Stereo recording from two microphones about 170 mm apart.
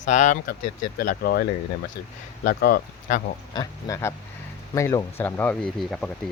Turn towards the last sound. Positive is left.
turn(degrees=5)  # may be behind; listen again after turning